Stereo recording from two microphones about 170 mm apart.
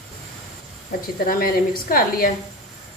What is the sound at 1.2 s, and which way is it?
A woman's voice, 60° left (ahead or behind).